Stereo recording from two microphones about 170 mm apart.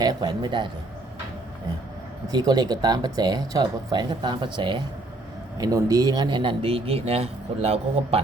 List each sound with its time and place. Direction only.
0.0 s speech: 25° right (ahead or behind)
2.3 s speech: 25° right (ahead or behind)